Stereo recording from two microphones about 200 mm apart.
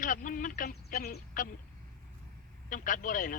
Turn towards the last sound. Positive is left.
turn(degrees=40)  # may be behind; listen again after turning